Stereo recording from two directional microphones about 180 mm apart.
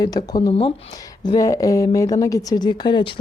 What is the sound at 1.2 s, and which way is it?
Speech, 20° left (ahead or behind).